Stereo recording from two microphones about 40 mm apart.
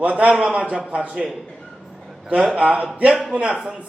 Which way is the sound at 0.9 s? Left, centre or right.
Right.